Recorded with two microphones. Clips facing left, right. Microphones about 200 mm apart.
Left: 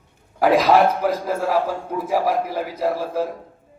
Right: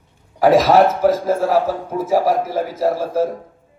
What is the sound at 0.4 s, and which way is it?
A man's voice, 45° right (ahead or behind).